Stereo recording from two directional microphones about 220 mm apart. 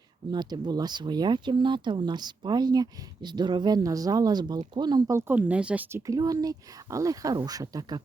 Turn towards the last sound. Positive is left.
turn(degrees=-15)  # may be behind; listen again after turning